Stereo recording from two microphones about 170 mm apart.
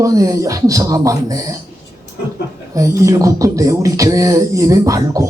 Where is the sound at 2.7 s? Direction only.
20° right (ahead or behind).